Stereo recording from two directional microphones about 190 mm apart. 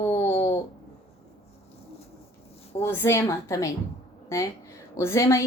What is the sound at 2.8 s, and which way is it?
Speech, 15° left (ahead or behind).